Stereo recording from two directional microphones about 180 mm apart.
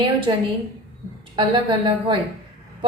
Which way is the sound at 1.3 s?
25° right (ahead or behind).